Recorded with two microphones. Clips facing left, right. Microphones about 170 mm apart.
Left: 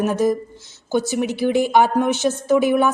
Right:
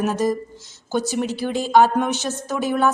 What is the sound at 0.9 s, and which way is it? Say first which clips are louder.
A woman's voice: left 2 dB; 10° left (ahead or behind).